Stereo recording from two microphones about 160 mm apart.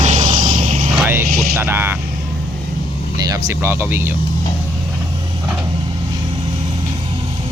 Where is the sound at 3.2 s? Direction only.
20° right (ahead or behind).